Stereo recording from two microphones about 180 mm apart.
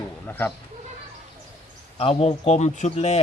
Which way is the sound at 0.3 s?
10° left (ahead or behind).